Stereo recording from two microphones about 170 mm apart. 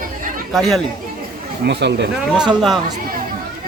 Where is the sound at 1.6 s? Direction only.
90° right.